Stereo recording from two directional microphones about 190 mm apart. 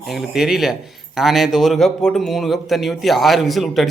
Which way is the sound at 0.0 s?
Centre (ahead or behind).